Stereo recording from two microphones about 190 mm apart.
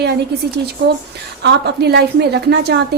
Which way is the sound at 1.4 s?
60° right (ahead or behind).